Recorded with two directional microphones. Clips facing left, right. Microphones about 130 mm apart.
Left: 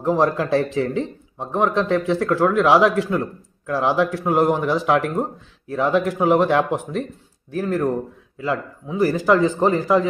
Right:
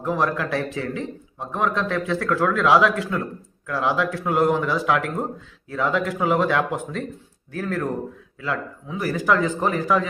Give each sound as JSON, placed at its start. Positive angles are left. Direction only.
{"t": 0.0, "sound": "a man's voice", "side_deg": 30}